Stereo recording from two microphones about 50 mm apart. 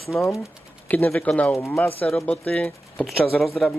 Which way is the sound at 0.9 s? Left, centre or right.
Left.